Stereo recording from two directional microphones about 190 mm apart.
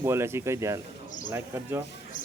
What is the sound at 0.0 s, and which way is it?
A man's voice, 15° right (ahead or behind).